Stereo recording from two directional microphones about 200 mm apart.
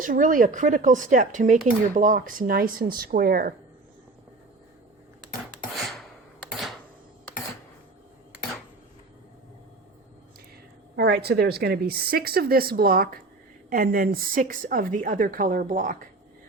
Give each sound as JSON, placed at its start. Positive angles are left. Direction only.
{"t": 0.0, "sound": "a woman's voice", "side_deg": -45}
{"t": 5.7, "sound": "a sound", "side_deg": 0}
{"t": 10.9, "sound": "a woman's voice", "side_deg": -55}